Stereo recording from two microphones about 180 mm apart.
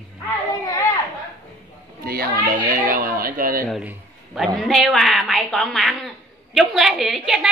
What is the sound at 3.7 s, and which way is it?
A woman's voice, 5° right (ahead or behind).